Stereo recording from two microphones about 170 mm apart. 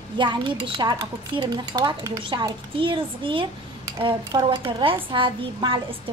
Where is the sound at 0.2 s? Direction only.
25° right (ahead or behind).